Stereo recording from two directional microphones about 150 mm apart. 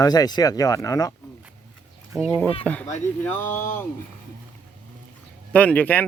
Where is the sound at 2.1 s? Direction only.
10° right (ahead or behind).